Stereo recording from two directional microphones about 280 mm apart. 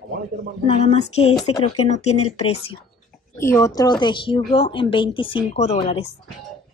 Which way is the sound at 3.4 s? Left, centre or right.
Centre.